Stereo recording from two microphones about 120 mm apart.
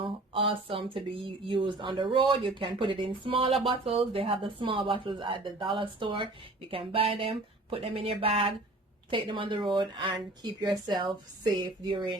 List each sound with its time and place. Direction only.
0.0 s speech: 45° right (ahead or behind)